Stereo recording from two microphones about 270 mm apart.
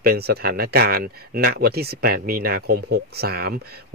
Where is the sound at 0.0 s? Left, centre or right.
Right.